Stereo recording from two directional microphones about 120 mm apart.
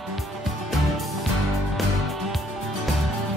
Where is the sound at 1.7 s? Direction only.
Centre (ahead or behind).